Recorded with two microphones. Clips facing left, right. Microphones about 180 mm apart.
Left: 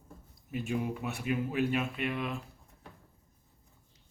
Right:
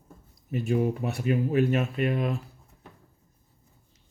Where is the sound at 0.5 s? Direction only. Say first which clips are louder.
Right 7 dB; 40° right (ahead or behind).